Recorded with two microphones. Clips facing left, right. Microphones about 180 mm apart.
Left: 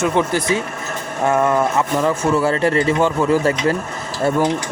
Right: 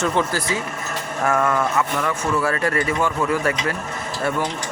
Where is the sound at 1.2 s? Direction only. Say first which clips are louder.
Left 4 dB; 20° left (ahead or behind).